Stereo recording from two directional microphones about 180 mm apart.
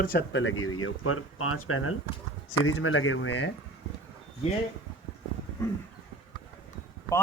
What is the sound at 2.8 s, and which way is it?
Speech, 90° left.